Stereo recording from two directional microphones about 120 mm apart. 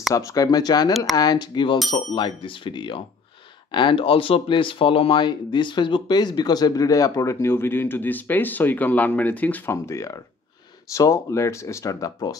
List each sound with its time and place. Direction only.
0.1 s speech: 30° left (ahead or behind)
9.8 s speech: 25° left (ahead or behind)